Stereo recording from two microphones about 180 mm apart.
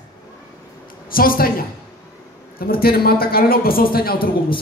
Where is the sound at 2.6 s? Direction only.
55° left (ahead or behind).